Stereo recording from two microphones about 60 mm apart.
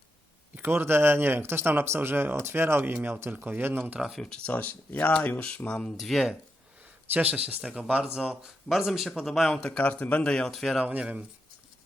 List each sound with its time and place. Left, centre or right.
0.6 s speech: right
4.4 s speech: left
6.0 s speech: centre
7.1 s speech: right
7.6 s speech: centre
8.7 s speech: centre
9.6 s speech: centre
10.5 s speech: centre
10.8 s speech: centre